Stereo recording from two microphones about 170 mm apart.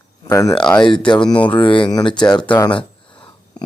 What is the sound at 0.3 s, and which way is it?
Speech, 20° left (ahead or behind).